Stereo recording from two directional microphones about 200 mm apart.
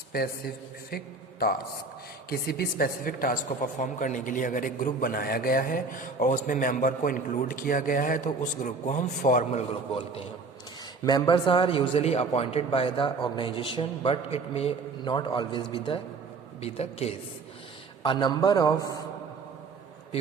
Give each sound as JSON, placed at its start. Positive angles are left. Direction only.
{"t": 0.9, "sound": "a man's voice", "side_deg": 50}